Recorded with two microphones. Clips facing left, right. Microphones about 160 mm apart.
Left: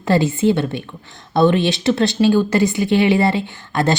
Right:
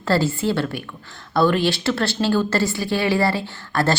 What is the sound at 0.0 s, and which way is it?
A woman's voice, 20° left (ahead or behind).